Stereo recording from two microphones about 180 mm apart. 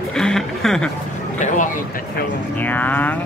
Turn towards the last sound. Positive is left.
turn(degrees=10)  # may be behind; listen again after turning